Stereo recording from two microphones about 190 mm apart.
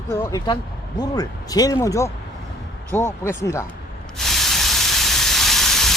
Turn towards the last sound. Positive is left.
turn(degrees=0)  # may be behind; listen again after turning